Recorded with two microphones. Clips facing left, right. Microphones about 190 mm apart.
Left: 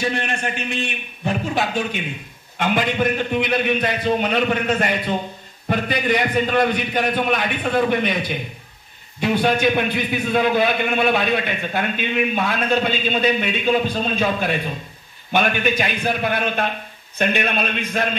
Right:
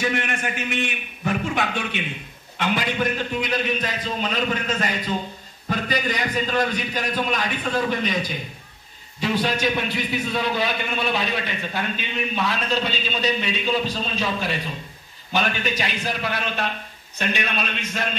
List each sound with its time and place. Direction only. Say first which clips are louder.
0.0 s a man's voice: left 1 dB; 30° left (ahead or behind)
2.6 s a man's voice: left 4 dB; 55° left (ahead or behind)